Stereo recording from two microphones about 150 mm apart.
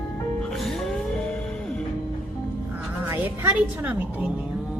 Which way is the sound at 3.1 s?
10° right (ahead or behind).